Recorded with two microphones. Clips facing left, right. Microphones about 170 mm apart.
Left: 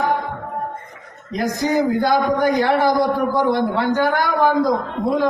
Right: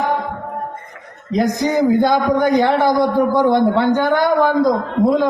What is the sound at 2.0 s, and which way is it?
Speech, 20° right (ahead or behind).